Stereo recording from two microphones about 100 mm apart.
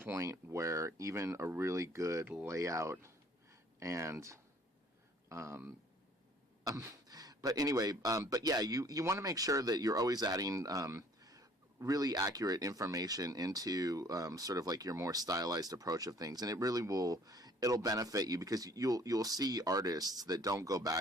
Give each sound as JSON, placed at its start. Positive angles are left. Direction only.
{"t": 0.0, "sound": "speech", "side_deg": -20}
{"t": 6.7, "sound": "speech", "side_deg": -35}